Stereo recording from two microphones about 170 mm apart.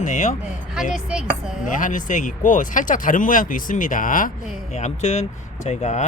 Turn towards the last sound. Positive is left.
turn(degrees=40)  # may be behind; listen again after turning